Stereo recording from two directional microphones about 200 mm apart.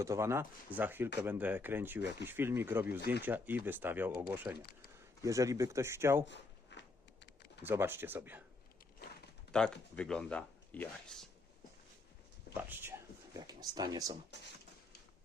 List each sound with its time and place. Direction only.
0.0 s speech: 15° right (ahead or behind)
6.2 s a sound: 65° left (ahead or behind)
7.6 s speech: 10° right (ahead or behind)
9.0 s a sound: 55° left (ahead or behind)
9.5 s speech: 5° left (ahead or behind)
12.5 s speech: 10° right (ahead or behind)